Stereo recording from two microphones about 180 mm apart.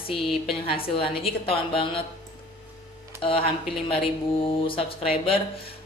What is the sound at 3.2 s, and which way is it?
Speech, 30° left (ahead or behind).